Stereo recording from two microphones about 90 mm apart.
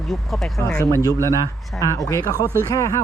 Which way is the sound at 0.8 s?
35° left (ahead or behind).